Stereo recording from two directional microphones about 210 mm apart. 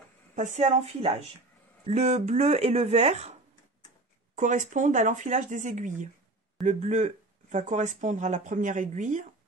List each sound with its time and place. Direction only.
0.4 s speech: 30° right (ahead or behind)
4.4 s speech: 35° right (ahead or behind)